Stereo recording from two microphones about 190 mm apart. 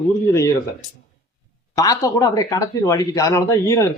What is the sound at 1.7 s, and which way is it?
Speech, 20° left (ahead or behind).